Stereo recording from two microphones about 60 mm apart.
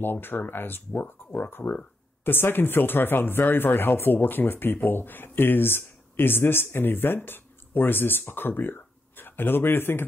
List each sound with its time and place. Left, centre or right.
0.0 s speech: left